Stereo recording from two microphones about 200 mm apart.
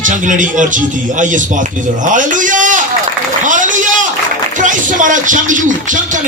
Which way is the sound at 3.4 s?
40° right (ahead or behind).